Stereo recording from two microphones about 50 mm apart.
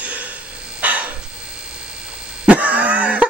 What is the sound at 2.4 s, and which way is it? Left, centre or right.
Throat clearing, right.